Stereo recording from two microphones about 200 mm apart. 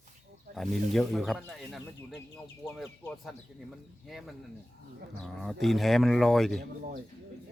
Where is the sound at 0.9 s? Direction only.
Centre (ahead or behind).